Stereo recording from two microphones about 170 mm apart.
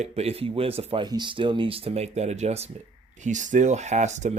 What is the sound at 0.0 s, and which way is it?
Speech, 35° right (ahead or behind).